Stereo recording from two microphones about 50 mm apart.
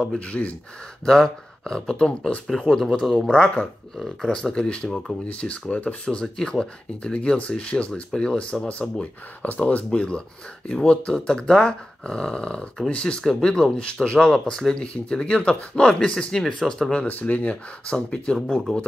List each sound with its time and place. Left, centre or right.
0.3 s speech: left
1.0 s speech: centre
2.4 s speech: centre
3.3 s speech: left
5.2 s speech: left
9.4 s speech: left; by 16.9 s centre
16.9 s speech: left